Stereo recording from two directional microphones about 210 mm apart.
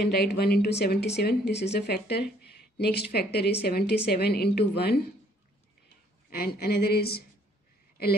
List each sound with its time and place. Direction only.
0.0 s speech: 50° left (ahead or behind)
6.3 s speech: 45° left (ahead or behind)